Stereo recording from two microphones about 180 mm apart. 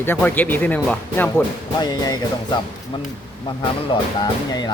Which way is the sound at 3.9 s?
20° left (ahead or behind).